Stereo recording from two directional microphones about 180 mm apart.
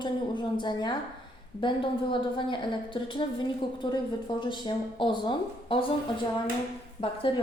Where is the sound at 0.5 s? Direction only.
25° left (ahead or behind).